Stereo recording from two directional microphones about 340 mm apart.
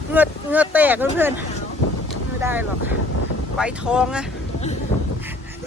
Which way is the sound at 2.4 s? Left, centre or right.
Centre.